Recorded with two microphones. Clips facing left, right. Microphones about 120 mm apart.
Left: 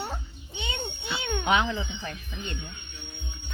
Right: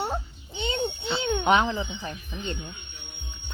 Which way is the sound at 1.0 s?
30° right (ahead or behind).